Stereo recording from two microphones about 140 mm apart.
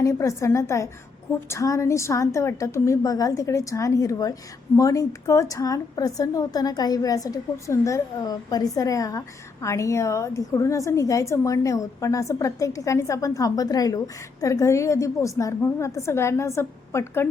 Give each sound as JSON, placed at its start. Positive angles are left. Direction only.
{"t": 0.0, "sound": "a woman's voice", "side_deg": 20}